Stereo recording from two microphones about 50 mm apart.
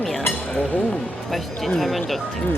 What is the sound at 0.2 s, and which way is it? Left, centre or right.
Chink, left.